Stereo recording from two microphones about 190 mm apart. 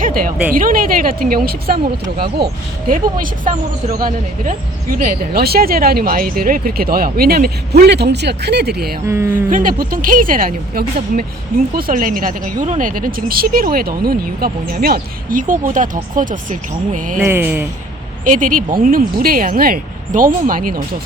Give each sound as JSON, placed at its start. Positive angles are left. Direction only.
{"t": 0.0, "sound": "a sound", "side_deg": -45}
{"t": 0.5, "sound": "speech", "side_deg": -50}
{"t": 9.0, "sound": "speech", "side_deg": -15}
{"t": 9.5, "sound": "speech", "side_deg": -45}
{"t": 17.2, "sound": "speech", "side_deg": -10}
{"t": 18.3, "sound": "speech", "side_deg": -45}